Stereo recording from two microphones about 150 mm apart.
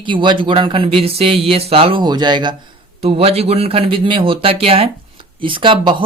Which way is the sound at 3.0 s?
40° right (ahead or behind).